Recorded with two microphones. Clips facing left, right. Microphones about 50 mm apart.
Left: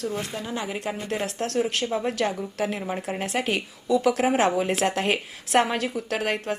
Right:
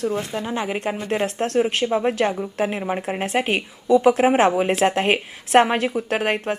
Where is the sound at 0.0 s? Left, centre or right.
Right.